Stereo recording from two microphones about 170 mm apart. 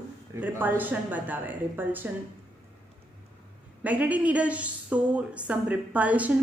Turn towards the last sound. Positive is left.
turn(degrees=-10)  # may be behind; listen again after turning